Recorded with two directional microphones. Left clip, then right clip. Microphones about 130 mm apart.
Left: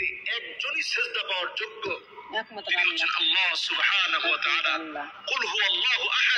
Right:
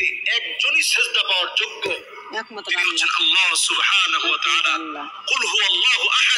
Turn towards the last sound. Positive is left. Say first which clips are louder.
# right 7 dB
turn(degrees=-30)  # may be behind; listen again after turning